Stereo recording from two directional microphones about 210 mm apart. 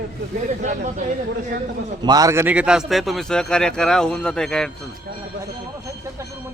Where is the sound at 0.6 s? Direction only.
35° right (ahead or behind).